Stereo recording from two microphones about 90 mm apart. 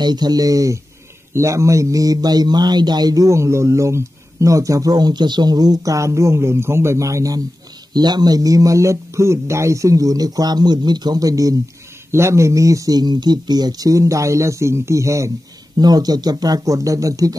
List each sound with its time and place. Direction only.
0.0 s a man's voice: 50° right (ahead or behind)
7.9 s a man's voice: 50° right (ahead or behind)
12.1 s a man's voice: 30° right (ahead or behind)
15.8 s speech: 45° right (ahead or behind)